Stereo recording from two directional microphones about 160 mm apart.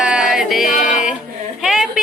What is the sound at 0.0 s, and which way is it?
Music, 5° right (ahead or behind).